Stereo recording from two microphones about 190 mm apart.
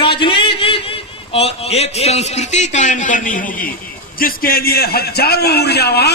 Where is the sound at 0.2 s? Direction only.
25° left (ahead or behind).